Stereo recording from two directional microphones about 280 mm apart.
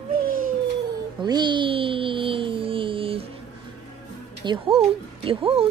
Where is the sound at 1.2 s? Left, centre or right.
Centre.